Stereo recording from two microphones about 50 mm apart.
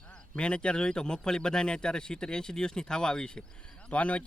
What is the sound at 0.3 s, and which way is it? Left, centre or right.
Speech, left.